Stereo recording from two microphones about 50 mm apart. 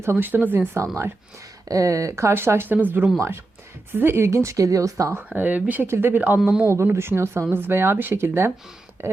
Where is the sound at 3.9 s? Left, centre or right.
Right.